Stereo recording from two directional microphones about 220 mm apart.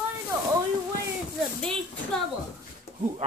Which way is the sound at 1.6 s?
5° left (ahead or behind).